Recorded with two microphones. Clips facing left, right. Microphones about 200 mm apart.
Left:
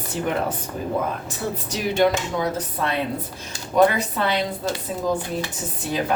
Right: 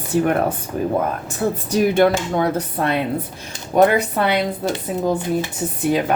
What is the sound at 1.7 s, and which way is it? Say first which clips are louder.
A woman's voice: right 5 dB; 55° right (ahead or behind).